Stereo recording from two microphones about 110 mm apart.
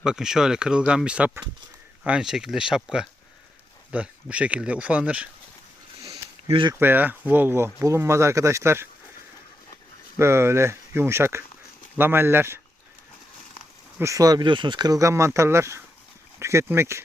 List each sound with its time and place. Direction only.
0.0 s speech: 5° right (ahead or behind)
6.5 s speech: 50° right (ahead or behind)
6.7 s speech: 20° right (ahead or behind)
10.2 s speech: 25° right (ahead or behind)
14.0 s speech: 30° right (ahead or behind)